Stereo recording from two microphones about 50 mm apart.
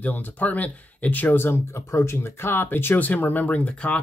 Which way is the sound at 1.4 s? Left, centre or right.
Left.